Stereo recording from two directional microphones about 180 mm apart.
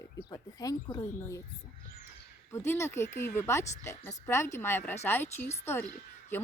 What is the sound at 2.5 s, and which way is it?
Speech, 15° left (ahead or behind).